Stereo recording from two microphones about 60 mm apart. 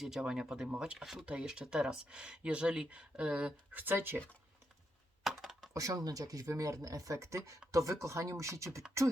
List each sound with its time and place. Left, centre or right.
0.0 s speech: centre
3.7 s speech: right
5.2 s a sound: centre
5.7 s speech: right
6.4 s speech: right